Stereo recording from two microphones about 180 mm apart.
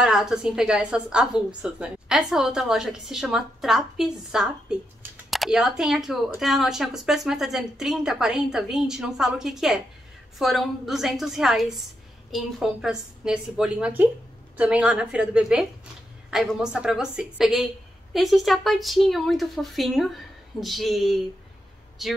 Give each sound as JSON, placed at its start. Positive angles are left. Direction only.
{"t": 0.0, "sound": "a woman's voice", "side_deg": -5}